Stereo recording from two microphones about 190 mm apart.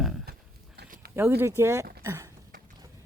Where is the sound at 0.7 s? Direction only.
55° right (ahead or behind).